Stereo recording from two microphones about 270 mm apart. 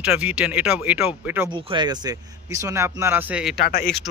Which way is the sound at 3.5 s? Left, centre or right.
Left.